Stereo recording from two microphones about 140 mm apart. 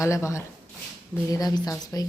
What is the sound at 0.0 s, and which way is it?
A woman's voice, 20° left (ahead or behind).